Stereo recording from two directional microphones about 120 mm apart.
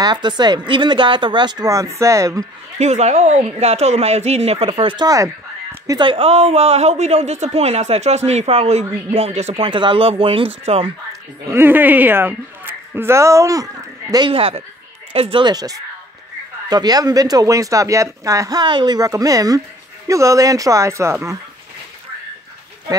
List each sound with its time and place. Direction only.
0.0 s speech: 40° right (ahead or behind)
2.8 s speech: 70° right (ahead or behind); by 5.0 s 45° right (ahead or behind)
5.0 s a sound: 25° right (ahead or behind)
5.9 s speech: 45° right (ahead or behind); by 9.6 s 65° right (ahead or behind)
9.6 s speech: 45° right (ahead or behind)
11.5 s speech: 15° right (ahead or behind)
14.3 s speech: 50° right (ahead or behind); by 21.4 s 25° right (ahead or behind)